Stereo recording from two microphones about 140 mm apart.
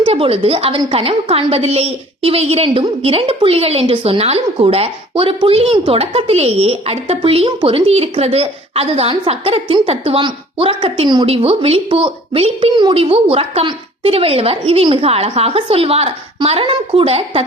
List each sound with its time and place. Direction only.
0.0 s a woman's voice: 40° right (ahead or behind)